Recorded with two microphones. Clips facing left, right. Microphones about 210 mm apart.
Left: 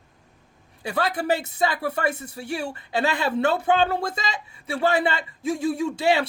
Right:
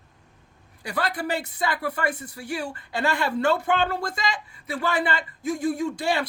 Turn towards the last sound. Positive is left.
turn(degrees=25)  # may be behind; listen again after turning